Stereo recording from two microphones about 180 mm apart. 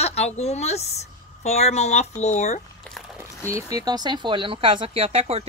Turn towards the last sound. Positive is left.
turn(degrees=-35)  # may be behind; listen again after turning